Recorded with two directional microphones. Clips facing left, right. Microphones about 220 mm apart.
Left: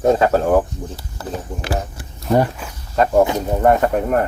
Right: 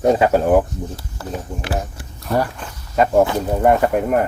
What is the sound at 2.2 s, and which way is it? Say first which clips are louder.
Speech: left 4 dB; 20° left (ahead or behind).